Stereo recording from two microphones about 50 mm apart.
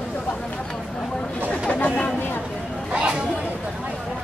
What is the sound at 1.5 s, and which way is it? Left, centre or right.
Chatter, left.